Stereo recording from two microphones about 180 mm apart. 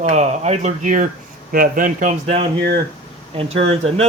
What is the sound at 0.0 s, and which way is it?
Speech, 40° right (ahead or behind).